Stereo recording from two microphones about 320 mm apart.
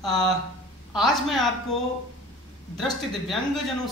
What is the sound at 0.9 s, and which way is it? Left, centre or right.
Speech, centre.